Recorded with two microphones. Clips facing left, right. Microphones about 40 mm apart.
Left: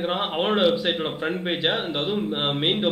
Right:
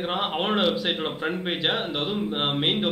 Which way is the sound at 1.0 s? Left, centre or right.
Centre.